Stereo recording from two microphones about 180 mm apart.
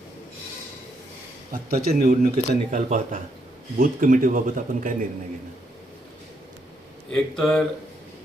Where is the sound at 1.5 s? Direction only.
50° right (ahead or behind).